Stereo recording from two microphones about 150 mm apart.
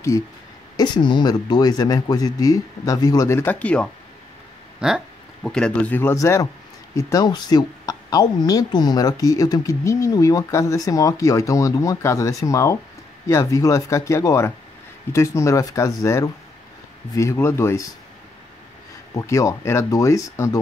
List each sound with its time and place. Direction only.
0.7 s speech: 30° left (ahead or behind); by 3.9 s 10° left (ahead or behind)
4.7 s a man's voice: 5° right (ahead or behind); by 17.8 s 15° left (ahead or behind)
19.1 s speech: 20° left (ahead or behind)